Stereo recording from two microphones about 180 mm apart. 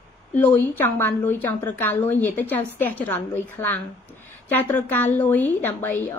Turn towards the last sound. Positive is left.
turn(degrees=10)  # may be behind; listen again after turning